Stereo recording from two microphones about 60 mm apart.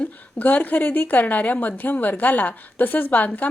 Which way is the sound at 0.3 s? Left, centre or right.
Left.